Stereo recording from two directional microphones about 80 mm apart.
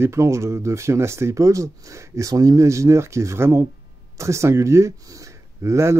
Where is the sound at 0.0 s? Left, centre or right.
Right.